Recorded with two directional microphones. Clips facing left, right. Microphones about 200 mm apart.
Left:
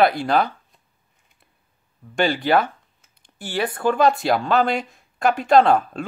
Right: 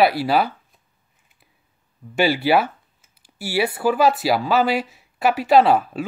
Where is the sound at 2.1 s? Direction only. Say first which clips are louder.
Right 1 dB; 10° right (ahead or behind).